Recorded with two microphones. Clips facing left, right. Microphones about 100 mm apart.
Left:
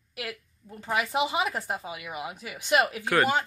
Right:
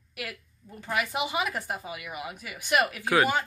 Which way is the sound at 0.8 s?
25° left (ahead or behind).